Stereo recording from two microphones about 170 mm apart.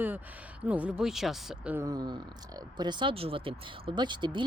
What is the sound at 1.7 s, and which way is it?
Speech, 20° right (ahead or behind).